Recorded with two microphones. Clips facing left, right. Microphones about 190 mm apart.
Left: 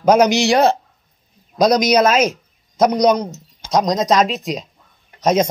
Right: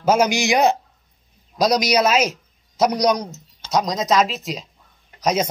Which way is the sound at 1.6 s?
50° left (ahead or behind).